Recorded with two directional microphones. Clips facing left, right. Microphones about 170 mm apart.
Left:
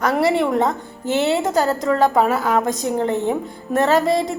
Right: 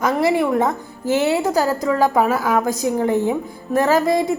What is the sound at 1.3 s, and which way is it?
Speech, 20° left (ahead or behind).